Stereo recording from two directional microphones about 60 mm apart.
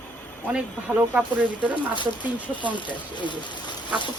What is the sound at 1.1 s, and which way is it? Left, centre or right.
Speech, right.